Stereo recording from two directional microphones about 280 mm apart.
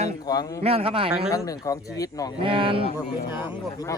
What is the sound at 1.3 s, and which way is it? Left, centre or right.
Speech, centre.